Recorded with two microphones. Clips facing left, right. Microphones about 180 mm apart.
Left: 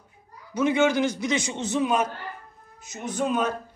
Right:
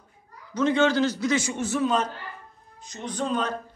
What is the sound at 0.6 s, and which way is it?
A man's voice, 10° left (ahead or behind).